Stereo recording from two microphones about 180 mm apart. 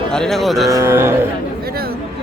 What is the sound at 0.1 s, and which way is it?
Speech, 5° left (ahead or behind).